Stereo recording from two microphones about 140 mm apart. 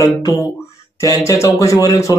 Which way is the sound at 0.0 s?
25° left (ahead or behind).